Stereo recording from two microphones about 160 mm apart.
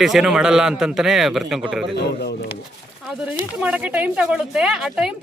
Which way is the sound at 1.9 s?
90° left.